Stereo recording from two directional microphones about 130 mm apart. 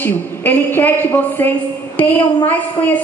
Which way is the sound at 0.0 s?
15° left (ahead or behind).